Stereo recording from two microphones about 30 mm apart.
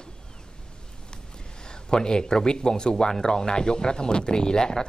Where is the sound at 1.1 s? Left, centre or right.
Left.